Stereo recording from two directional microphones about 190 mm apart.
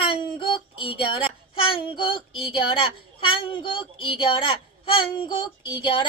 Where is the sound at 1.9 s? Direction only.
25° left (ahead or behind).